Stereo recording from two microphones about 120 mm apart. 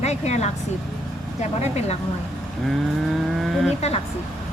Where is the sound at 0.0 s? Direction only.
70° left (ahead or behind).